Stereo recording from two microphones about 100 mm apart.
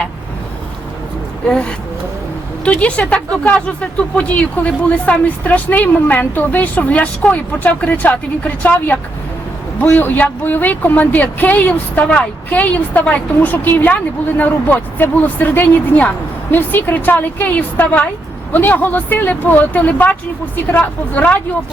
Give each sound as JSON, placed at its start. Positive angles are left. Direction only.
{"t": 1.5, "sound": "speech", "side_deg": 10}